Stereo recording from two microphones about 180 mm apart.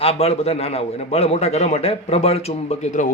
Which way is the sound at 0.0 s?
35° left (ahead or behind).